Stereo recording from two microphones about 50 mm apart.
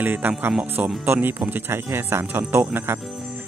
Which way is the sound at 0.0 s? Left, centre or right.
Right.